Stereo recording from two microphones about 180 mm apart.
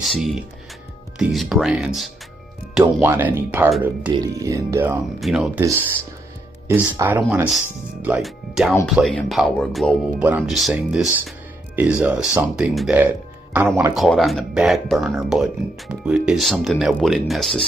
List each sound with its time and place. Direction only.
0.0 s speech: centre (ahead or behind)
5.2 s speech: centre (ahead or behind)
5.6 s speech: 15° right (ahead or behind); by 17.6 s centre (ahead or behind)